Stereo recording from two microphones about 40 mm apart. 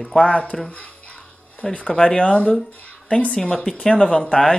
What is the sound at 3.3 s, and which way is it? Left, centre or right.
Speech, left.